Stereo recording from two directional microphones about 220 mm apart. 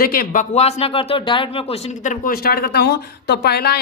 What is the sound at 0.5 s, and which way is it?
Speech, 30° left (ahead or behind).